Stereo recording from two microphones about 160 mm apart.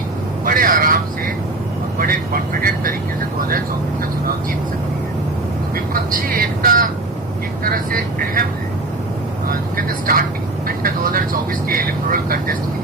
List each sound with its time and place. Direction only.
0.4 s vehicle: 60° right (ahead or behind)
2.0 s speech: 65° right (ahead or behind)
5.7 s speech: 60° right (ahead or behind)
9.5 s speech: 65° right (ahead or behind)